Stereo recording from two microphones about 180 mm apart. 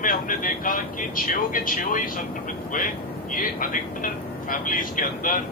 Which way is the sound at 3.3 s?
50° left (ahead or behind).